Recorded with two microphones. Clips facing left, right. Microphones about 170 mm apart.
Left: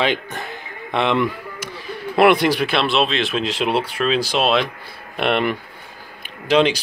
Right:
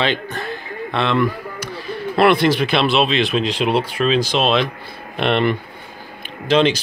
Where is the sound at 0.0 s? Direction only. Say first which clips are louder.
Even; 15° left (ahead or behind).